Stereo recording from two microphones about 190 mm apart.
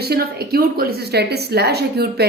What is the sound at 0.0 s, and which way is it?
A woman's voice, 55° right (ahead or behind).